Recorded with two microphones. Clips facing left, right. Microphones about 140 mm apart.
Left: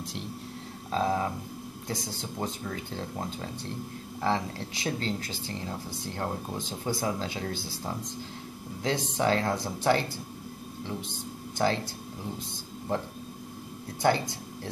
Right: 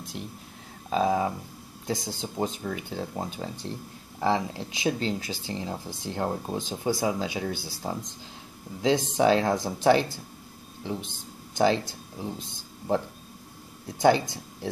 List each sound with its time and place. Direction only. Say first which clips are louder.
0.8 s speech: right 3 dB; 15° right (ahead or behind)
14.0 s speech: right 4 dB; 20° right (ahead or behind)